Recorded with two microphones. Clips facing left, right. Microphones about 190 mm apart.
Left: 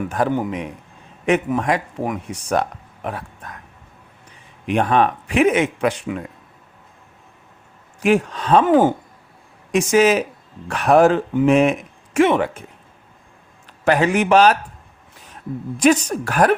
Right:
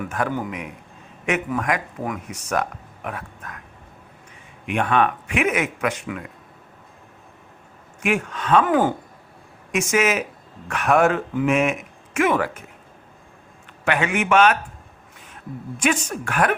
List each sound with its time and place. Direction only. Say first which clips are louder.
0.1 s speech: left 5 dB; 30° left (ahead or behind)
4.6 s speech: left 3 dB; 35° left (ahead or behind)
8.0 s speech: left 6 dB; 35° left (ahead or behind)
13.8 s speech: left 5 dB; 35° left (ahead or behind)
15.8 s speech: left 7 dB; 40° left (ahead or behind)